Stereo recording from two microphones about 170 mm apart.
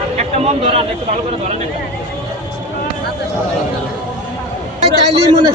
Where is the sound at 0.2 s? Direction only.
40° right (ahead or behind).